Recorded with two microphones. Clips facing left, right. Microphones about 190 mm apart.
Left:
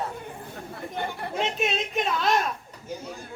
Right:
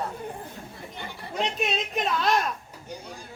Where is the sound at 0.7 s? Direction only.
50° left (ahead or behind).